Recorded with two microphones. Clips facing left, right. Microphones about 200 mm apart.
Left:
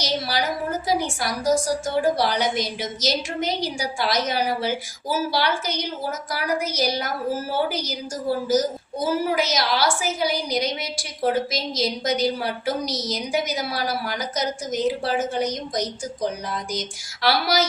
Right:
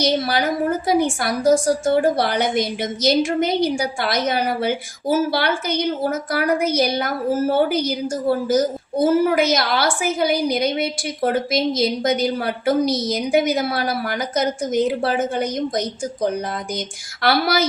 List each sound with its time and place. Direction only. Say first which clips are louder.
0.0 s a woman's voice: right 6 dB; 55° right (ahead or behind)